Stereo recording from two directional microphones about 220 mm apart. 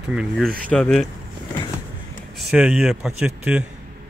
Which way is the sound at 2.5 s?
5° right (ahead or behind).